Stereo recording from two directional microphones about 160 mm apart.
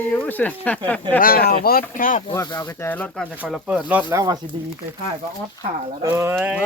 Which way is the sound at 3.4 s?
5° right (ahead or behind).